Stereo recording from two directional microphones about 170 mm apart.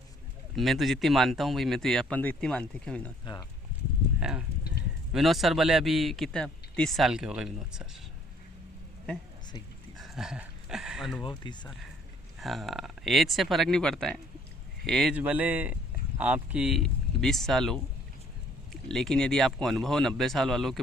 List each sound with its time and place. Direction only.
0.5 s a man's voice: centre (ahead or behind)
4.2 s a man's voice: 5° right (ahead or behind)
10.0 s dog: centre (ahead or behind)
11.3 s speech: 25° left (ahead or behind)
12.4 s a man's voice: centre (ahead or behind)
15.1 s a man's voice: 10° right (ahead or behind)